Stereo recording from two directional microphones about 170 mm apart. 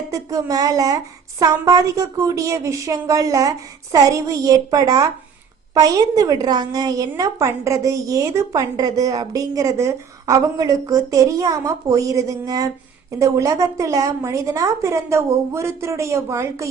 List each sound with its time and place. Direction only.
0.1 s a woman's voice: 20° right (ahead or behind)